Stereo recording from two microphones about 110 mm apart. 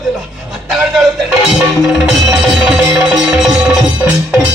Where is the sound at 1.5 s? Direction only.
Centre (ahead or behind).